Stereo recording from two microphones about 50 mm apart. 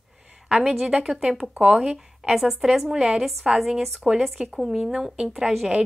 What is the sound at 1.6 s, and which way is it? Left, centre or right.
Speech, centre.